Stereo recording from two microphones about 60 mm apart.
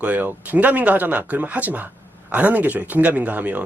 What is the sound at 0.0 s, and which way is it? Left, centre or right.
Speech, right.